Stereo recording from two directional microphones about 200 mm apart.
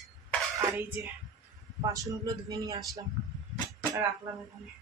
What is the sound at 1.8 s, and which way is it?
A man's voice, 20° right (ahead or behind).